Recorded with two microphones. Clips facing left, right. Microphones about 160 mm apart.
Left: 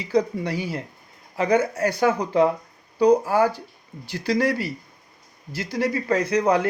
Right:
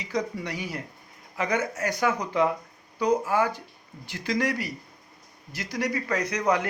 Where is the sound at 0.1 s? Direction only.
30° left (ahead or behind).